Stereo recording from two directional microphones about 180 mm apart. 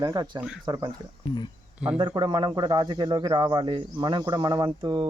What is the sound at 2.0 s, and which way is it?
Speech, 25° right (ahead or behind).